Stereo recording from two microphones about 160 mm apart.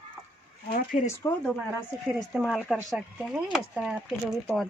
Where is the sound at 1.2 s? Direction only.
20° left (ahead or behind).